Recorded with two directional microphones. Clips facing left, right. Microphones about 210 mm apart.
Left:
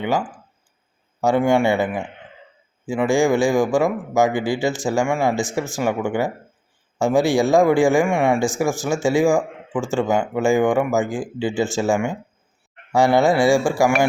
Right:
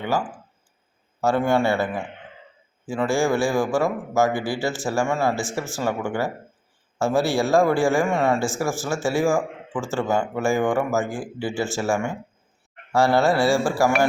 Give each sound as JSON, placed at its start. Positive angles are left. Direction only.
{"t": 0.0, "sound": "a man's voice", "side_deg": 15}